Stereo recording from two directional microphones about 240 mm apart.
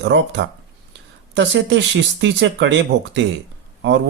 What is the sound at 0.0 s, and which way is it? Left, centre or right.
Speech, right.